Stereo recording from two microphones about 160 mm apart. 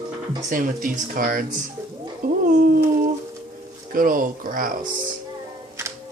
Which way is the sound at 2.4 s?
65° right (ahead or behind).